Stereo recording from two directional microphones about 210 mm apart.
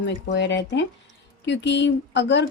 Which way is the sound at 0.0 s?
55° left (ahead or behind).